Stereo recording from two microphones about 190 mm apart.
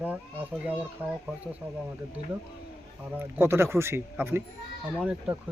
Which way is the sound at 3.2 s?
10° right (ahead or behind).